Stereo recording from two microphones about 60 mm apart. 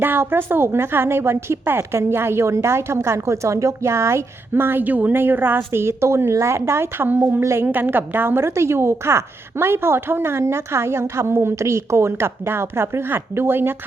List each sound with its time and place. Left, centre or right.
0.0 s a woman's voice: right
7.6 s a woman's voice: right